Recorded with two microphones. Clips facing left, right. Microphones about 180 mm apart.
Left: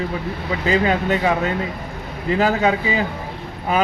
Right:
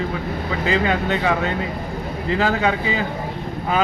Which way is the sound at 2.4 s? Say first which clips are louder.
Left 2 dB; 15° left (ahead or behind).